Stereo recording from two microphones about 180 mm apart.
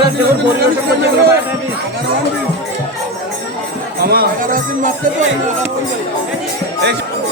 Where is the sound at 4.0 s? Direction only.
60° right (ahead or behind).